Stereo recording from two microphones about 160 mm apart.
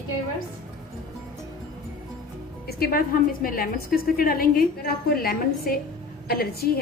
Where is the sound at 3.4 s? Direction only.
65° left (ahead or behind).